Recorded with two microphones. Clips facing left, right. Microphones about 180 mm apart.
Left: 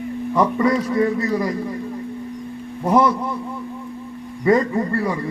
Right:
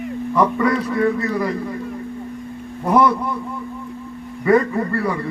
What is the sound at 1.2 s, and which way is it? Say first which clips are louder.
Speech: even; 60° right (ahead or behind).